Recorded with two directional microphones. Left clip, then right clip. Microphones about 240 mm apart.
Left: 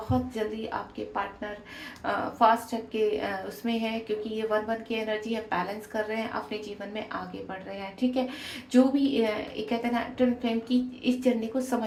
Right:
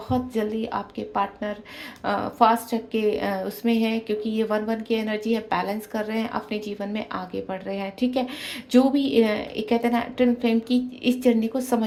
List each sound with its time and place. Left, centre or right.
0.1 s a woman's voice: right